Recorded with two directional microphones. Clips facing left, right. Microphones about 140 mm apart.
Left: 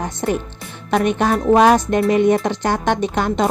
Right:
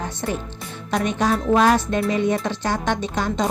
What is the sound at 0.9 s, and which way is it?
A woman's voice, 60° left (ahead or behind).